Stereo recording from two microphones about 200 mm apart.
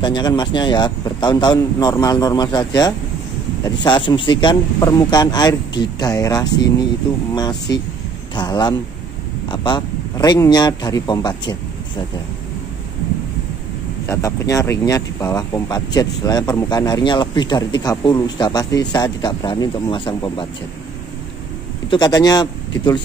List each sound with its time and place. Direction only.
0.0 s speech: 20° left (ahead or behind)
14.0 s speech: 15° left (ahead or behind)
21.9 s speech: 20° left (ahead or behind)